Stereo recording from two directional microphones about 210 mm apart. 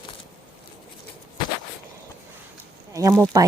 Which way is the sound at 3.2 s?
15° right (ahead or behind).